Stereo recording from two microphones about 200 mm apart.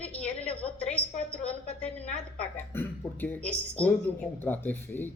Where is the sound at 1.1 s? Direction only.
35° left (ahead or behind).